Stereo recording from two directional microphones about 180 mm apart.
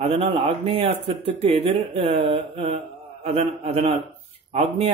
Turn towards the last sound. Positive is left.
turn(degrees=-35)  # may be behind; listen again after turning